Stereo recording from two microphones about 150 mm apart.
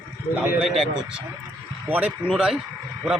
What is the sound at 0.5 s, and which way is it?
Speech, centre (ahead or behind).